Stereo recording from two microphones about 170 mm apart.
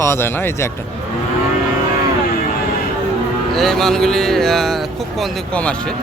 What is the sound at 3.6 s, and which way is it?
Speech, centre (ahead or behind).